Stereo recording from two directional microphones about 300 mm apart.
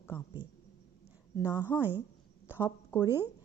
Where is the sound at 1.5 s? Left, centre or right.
Centre.